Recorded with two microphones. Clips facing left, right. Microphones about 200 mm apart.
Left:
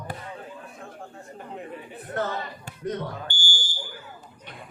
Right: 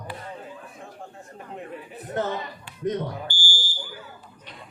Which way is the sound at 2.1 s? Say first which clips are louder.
Right 2 dB; 20° right (ahead or behind).